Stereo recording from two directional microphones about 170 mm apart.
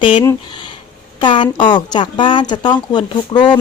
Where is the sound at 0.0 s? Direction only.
30° left (ahead or behind).